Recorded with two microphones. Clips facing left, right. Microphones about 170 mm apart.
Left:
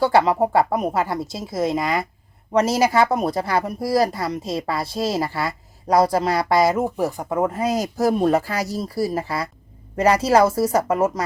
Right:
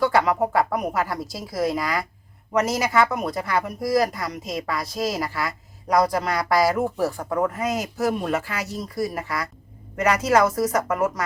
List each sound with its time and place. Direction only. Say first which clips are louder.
0.0 s speech: left 3 dB; 30° left (ahead or behind)